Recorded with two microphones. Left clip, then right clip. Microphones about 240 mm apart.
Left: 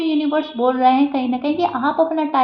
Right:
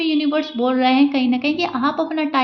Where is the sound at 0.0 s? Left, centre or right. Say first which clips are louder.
Even; right.